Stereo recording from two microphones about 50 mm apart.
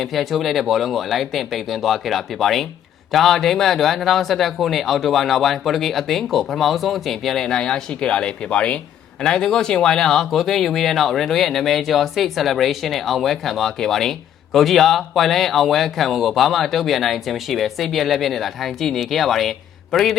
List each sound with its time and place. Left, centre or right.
0.0 s speech: centre
7.4 s speech: centre
9.2 s speech: centre